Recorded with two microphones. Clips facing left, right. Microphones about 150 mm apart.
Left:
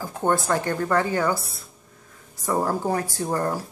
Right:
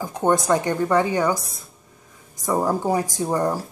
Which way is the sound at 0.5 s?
15° right (ahead or behind).